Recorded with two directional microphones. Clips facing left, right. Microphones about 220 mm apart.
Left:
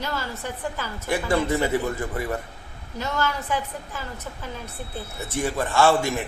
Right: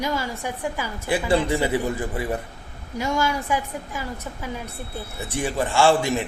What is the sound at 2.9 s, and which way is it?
A woman's voice, 10° right (ahead or behind).